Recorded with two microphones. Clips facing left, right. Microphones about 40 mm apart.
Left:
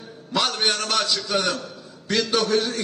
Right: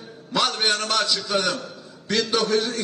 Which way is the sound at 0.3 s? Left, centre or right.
Centre.